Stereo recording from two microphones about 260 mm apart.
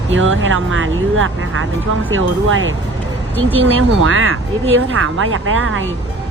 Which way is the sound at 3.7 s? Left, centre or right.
Right.